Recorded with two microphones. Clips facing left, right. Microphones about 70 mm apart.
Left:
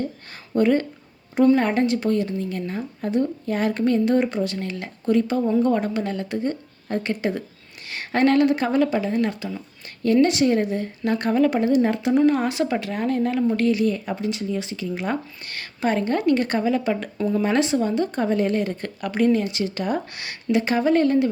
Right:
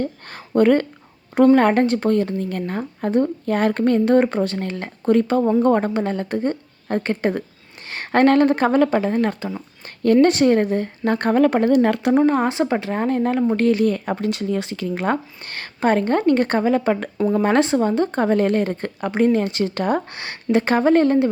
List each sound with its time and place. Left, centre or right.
0.0 s a sound: right
1.5 s a woman's voice: right
10.0 s a woman's voice: right
12.1 s a woman's voice: right
18.8 s a woman's voice: right
20.1 s a woman's voice: right